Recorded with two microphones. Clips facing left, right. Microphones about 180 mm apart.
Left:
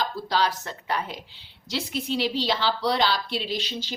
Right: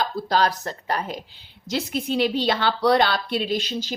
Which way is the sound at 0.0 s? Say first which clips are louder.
Right 3 dB; 45° right (ahead or behind).